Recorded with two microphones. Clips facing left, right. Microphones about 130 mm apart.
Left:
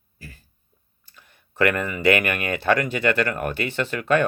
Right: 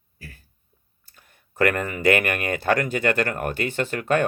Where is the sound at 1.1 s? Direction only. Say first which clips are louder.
Even; 50° right (ahead or behind).